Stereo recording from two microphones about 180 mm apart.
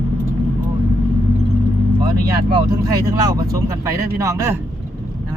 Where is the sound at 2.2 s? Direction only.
20° right (ahead or behind).